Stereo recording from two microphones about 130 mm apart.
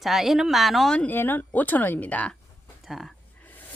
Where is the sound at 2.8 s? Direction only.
Centre (ahead or behind).